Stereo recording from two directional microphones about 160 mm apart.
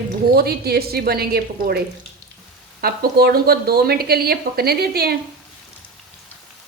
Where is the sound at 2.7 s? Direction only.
70° right (ahead or behind).